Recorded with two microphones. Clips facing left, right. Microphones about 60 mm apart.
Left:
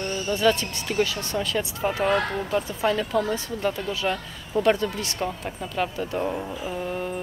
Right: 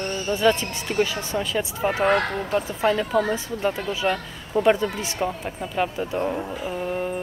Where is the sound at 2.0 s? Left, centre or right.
Right.